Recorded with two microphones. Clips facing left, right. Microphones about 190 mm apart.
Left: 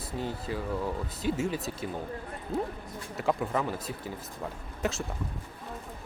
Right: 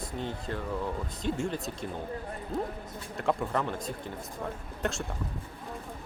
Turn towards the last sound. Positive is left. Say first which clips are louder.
# left 1 dB
turn(degrees=0)  # may be behind; listen again after turning